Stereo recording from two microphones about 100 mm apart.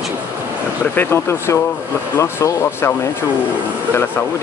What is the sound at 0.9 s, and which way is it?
Speech, 25° left (ahead or behind).